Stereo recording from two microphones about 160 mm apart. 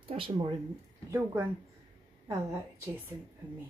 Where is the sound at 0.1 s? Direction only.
30° right (ahead or behind).